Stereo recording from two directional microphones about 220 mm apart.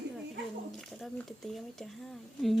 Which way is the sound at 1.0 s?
Centre (ahead or behind).